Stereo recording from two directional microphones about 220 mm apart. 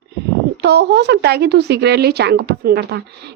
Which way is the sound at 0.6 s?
50° right (ahead or behind).